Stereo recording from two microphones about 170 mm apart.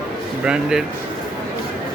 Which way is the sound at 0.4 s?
5° right (ahead or behind).